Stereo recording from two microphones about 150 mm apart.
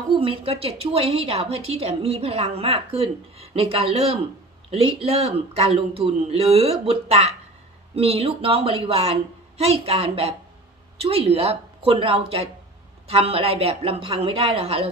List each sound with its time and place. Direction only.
0.1 s a woman's voice: 35° right (ahead or behind)